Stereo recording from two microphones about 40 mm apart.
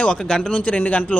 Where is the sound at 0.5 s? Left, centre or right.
Left.